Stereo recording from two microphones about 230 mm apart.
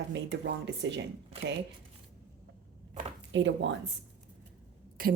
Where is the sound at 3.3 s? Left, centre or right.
Right.